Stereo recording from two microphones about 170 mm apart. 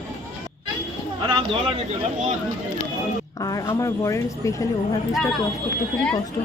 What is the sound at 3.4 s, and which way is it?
Speech, 25° left (ahead or behind).